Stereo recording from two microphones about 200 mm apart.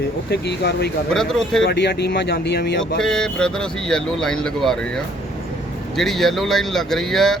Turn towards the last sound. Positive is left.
turn(degrees=0)  # may be behind; listen again after turning